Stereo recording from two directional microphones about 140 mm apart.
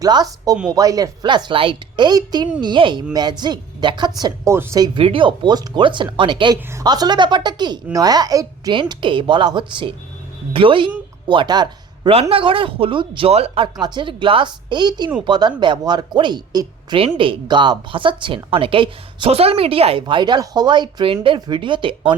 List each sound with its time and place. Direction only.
0.0 s a woman's voice: 25° right (ahead or behind)
4.5 s speech: 15° right (ahead or behind)
4.8 s a woman's voice: 40° right (ahead or behind)
13.7 s a woman's voice: 30° right (ahead or behind)